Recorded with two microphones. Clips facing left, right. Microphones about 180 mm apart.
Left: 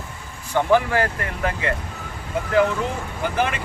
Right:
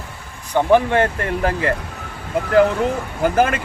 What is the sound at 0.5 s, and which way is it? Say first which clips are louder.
Speech: right 4 dB; 20° right (ahead or behind).